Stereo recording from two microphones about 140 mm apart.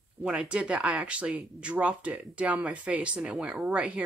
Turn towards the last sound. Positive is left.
turn(degrees=-5)  # may be behind; listen again after turning